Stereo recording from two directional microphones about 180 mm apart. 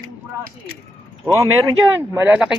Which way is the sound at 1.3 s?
15° right (ahead or behind).